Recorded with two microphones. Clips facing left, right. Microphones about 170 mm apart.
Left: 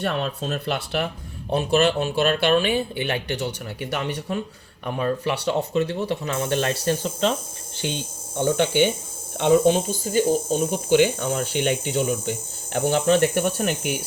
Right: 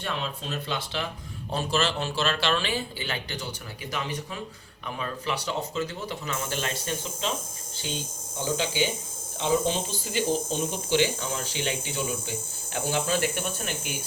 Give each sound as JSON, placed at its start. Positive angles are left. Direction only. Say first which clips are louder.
{"t": 0.0, "sound": "speech", "louder": "left 7 dB", "side_deg": 65}
{"t": 4.9, "sound": "speech", "louder": "left 8 dB", "side_deg": 40}
{"t": 6.0, "sound": "speech", "louder": "left 8 dB", "side_deg": 60}
{"t": 10.2, "sound": "speech", "louder": "left 6 dB", "side_deg": 10}
{"t": 10.7, "sound": "speech", "louder": "left 7 dB", "side_deg": 55}